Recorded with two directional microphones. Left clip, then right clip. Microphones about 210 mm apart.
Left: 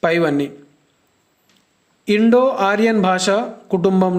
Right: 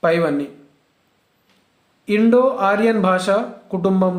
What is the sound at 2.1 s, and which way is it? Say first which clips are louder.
Speech: left 1 dB; 35° left (ahead or behind).